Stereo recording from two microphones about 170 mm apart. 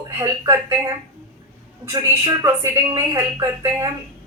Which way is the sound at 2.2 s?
20° right (ahead or behind).